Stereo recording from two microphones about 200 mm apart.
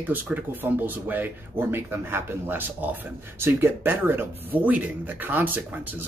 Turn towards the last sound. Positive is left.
turn(degrees=-10)  # may be behind; listen again after turning